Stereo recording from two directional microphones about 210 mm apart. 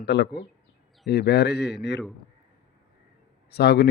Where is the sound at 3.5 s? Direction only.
50° left (ahead or behind).